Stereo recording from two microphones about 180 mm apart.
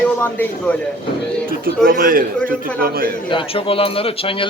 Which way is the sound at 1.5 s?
55° right (ahead or behind).